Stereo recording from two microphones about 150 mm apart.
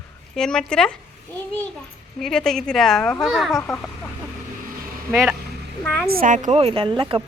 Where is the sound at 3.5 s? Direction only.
15° left (ahead or behind).